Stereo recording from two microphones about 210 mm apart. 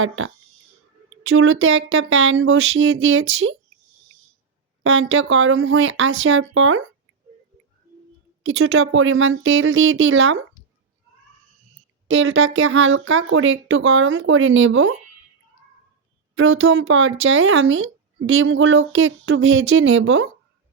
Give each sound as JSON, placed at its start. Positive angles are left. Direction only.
{"t": 1.2, "sound": "speech", "side_deg": -75}
{"t": 4.8, "sound": "speech", "side_deg": -75}
{"t": 8.4, "sound": "speech", "side_deg": -80}
{"t": 12.0, "sound": "speech", "side_deg": -70}
{"t": 16.3, "sound": "speech", "side_deg": -75}